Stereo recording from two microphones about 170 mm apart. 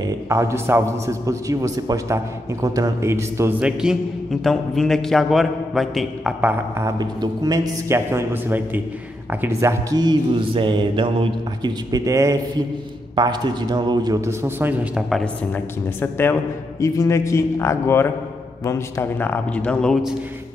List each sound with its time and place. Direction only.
0.0 s a man's voice: 15° right (ahead or behind); by 6.5 s centre (ahead or behind)
6.8 s a man's voice: 25° right (ahead or behind); by 15.6 s centre (ahead or behind)
16.0 s a man's voice: 15° left (ahead or behind)